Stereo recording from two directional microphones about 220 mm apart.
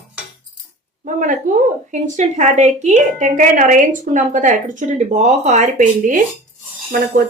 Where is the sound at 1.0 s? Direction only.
35° right (ahead or behind).